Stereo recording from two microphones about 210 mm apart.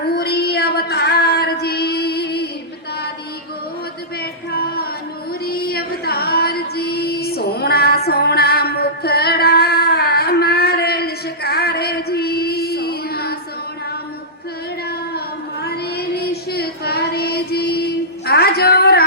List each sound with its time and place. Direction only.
0.0 s female singing: 50° left (ahead or behind)
4.5 s a sound: 45° left (ahead or behind)
5.5 s female singing: 45° left (ahead or behind)
15.6 s child singing: 50° left (ahead or behind)